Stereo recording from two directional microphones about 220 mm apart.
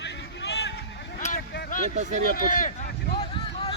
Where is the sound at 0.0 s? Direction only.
50° left (ahead or behind).